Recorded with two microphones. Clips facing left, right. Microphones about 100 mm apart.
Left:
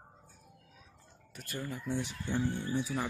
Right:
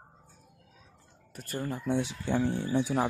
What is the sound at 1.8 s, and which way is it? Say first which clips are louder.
Speech: right 7 dB; 65° right (ahead or behind).